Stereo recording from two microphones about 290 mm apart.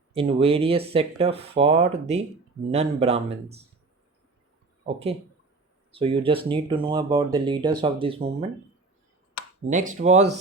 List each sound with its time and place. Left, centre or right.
0.1 s speech: centre
4.9 s speech: centre
9.6 s speech: right